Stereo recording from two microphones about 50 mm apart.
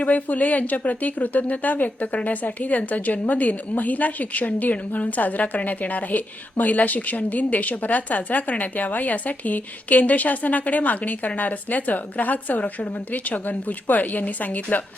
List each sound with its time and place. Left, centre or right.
0.0 s a woman's voice: left